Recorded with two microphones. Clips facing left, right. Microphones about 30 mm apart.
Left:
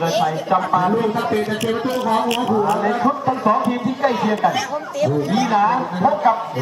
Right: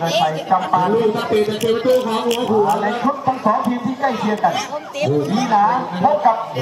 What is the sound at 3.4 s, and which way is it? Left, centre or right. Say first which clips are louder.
Speech: left 1 dB; left.